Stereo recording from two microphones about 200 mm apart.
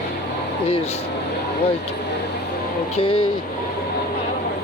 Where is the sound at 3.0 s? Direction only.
25° left (ahead or behind).